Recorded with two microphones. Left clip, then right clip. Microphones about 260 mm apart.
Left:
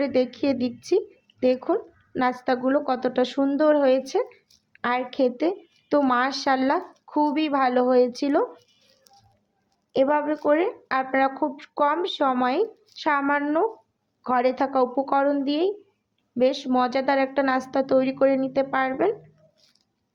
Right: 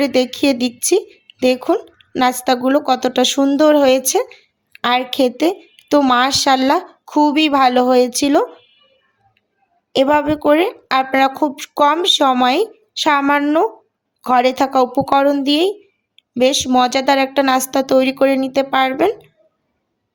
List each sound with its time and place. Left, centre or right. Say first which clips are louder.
0.0 s speech: right 8 dB; right
9.9 s speech: right 8 dB; right